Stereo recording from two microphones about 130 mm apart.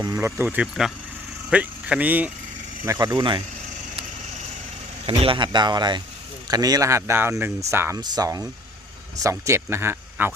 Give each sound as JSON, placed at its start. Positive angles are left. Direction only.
{"t": 0.0, "sound": "speech", "side_deg": -25}
{"t": 2.8, "sound": "speech", "side_deg": -30}
{"t": 5.0, "sound": "speech", "side_deg": -45}